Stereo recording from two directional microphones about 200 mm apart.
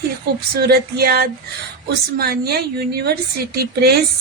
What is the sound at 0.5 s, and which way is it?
Speech, 50° right (ahead or behind).